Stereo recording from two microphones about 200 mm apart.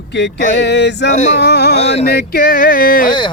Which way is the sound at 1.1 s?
35° left (ahead or behind).